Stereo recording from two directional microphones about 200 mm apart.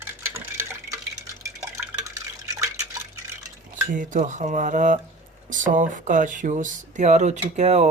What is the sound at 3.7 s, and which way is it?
Speech, 40° right (ahead or behind).